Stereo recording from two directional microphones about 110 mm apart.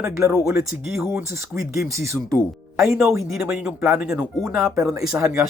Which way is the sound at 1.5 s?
25° right (ahead or behind).